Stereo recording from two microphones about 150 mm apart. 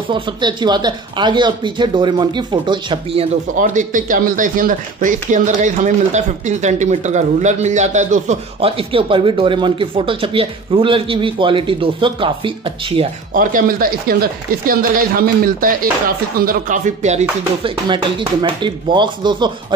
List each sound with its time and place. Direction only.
0.1 s speech: 30° right (ahead or behind)
3.5 s speech: 60° right (ahead or behind)
8.5 s speech: 40° right (ahead or behind)
13.3 s speech: 65° right (ahead or behind)
17.6 s speech: 35° right (ahead or behind)